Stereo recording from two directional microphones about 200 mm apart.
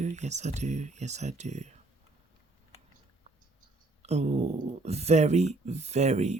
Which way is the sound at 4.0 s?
30° right (ahead or behind).